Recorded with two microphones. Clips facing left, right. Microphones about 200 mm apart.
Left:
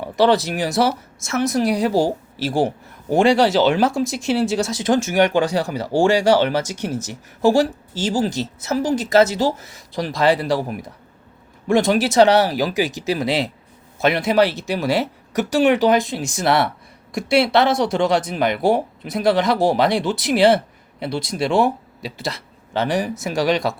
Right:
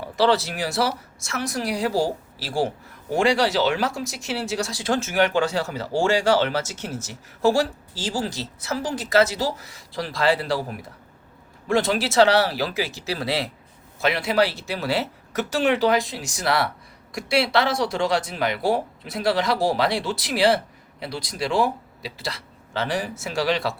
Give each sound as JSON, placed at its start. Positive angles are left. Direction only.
{"t": 0.2, "sound": "speech", "side_deg": 20}